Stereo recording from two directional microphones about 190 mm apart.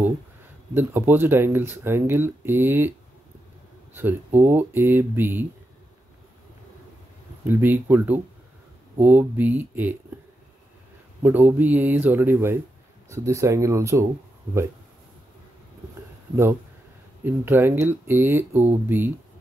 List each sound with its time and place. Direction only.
0.7 s speech: 10° right (ahead or behind)
3.9 s speech: 10° right (ahead or behind)
7.4 s speech: 10° right (ahead or behind)
11.2 s speech: 10° right (ahead or behind)
17.2 s speech: 10° right (ahead or behind)